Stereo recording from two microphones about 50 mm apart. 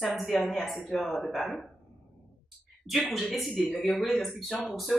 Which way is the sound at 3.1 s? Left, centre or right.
Centre.